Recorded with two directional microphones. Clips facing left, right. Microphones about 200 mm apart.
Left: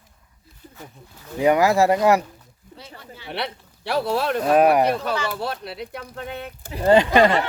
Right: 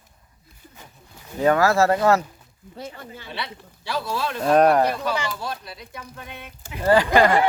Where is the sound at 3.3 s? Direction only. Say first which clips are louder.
Left 7 dB; 60° left (ahead or behind).